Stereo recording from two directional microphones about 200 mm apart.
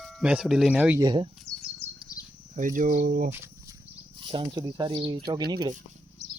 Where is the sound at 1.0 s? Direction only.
20° right (ahead or behind).